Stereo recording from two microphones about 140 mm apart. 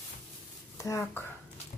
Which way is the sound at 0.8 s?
20° left (ahead or behind).